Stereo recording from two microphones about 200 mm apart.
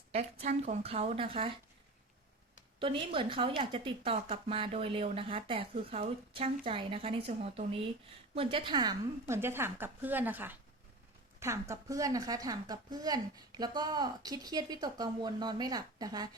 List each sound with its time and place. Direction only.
0.1 s a woman's voice: 35° right (ahead or behind)
2.7 s a woman's voice: 25° right (ahead or behind)